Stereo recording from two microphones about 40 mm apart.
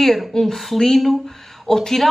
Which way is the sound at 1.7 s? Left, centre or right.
Centre.